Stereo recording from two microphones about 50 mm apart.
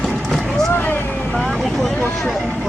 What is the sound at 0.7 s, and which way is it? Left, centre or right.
Vehicle, left.